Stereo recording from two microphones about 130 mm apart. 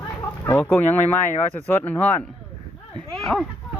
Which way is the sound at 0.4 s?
20° left (ahead or behind).